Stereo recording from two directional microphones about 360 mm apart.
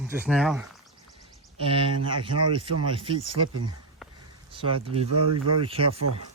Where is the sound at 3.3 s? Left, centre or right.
Right.